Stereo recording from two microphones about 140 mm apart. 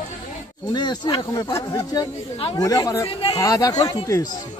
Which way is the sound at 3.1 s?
40° left (ahead or behind).